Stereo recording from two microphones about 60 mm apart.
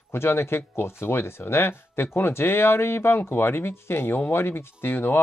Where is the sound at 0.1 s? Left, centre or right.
Left.